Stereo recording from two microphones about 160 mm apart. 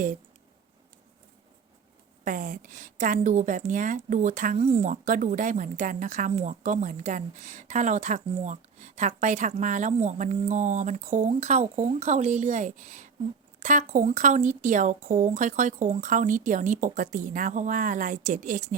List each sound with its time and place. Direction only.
2.2 s a woman's voice: 55° right (ahead or behind); by 4.9 s 40° right (ahead or behind)
4.9 s a woman's voice: 55° right (ahead or behind)